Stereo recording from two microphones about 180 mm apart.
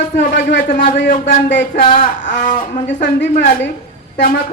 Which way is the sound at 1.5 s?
85° left.